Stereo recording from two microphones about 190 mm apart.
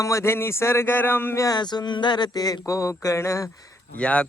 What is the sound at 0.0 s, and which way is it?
Speech, 15° left (ahead or behind).